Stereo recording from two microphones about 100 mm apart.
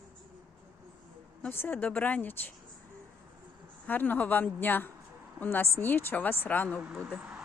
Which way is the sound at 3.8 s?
15° left (ahead or behind).